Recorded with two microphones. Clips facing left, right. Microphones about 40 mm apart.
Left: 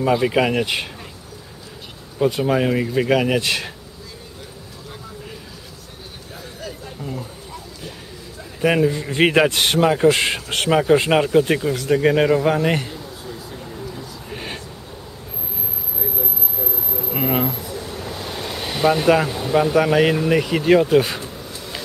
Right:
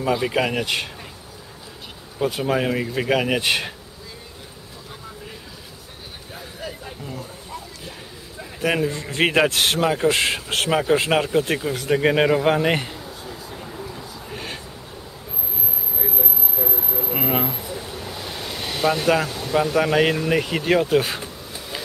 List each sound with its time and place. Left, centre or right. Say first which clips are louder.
0.0 s a man's voice: left 4 dB; centre
2.1 s a man's voice: left 3 dB; centre
3.3 s speech: even; centre
8.5 s a man's voice: left 4 dB; centre
11.7 s a sound: left 1 dB; centre
14.3 s a sound: left 2 dB; centre
16.0 s a sound: left 1 dB; centre
17.9 s speech: left 3 dB; centre
21.2 s insect: left 2 dB; centre